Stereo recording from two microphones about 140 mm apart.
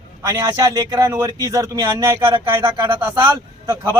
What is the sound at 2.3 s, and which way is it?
A man's voice, 35° right (ahead or behind).